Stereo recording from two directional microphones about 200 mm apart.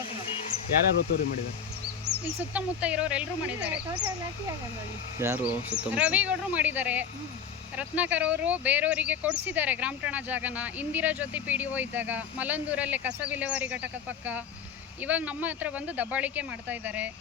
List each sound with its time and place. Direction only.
0.3 s a sound: 30° left (ahead or behind)
1.1 s speech: 50° left (ahead or behind)
2.4 s speech: 5° right (ahead or behind)
5.2 s speech: 10° right (ahead or behind)